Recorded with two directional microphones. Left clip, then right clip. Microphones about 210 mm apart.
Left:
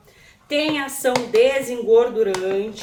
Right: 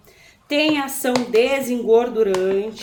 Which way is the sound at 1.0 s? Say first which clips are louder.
Left 1 dB; 40° right (ahead or behind).